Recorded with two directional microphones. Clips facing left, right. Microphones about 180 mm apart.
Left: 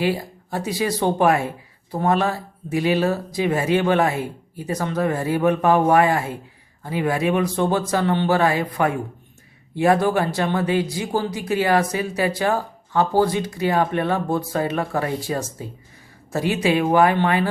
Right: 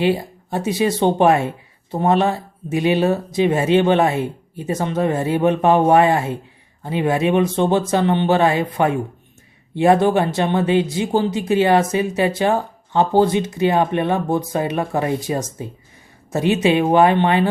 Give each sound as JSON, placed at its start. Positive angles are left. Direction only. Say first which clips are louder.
{"t": 0.0, "sound": "speech", "louder": "right 4 dB", "side_deg": -25}